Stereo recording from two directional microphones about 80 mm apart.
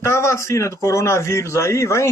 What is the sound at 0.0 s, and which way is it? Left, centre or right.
A man's voice, left.